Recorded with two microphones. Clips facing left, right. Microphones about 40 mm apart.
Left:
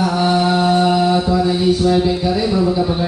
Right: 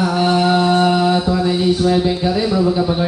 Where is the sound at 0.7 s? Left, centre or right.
Right.